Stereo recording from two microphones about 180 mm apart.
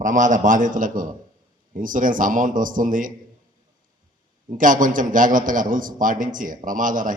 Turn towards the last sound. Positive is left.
turn(degrees=-45)  # may be behind; listen again after turning